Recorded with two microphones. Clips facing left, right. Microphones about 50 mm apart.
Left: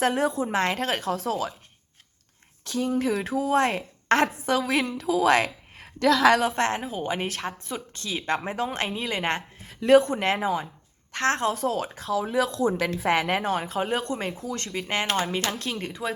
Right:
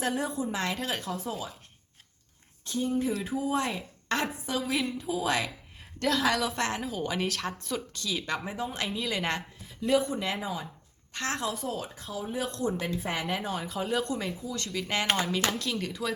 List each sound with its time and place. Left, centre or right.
0.0 s speech: left
0.5 s speech: left
1.0 s a woman's voice: left
2.6 s speech: left
3.2 s a woman's voice: left
6.6 s speech: left
7.9 s speech: left
8.4 s speech: left
9.0 s speech: left
9.6 s a woman's voice: left